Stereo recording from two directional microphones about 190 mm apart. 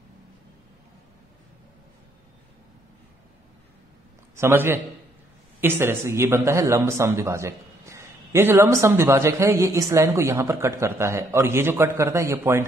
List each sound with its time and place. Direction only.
4.4 s a man's voice: 15° right (ahead or behind)